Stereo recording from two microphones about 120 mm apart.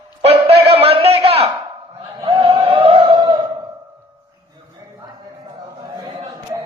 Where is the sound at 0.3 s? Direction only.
55° right (ahead or behind).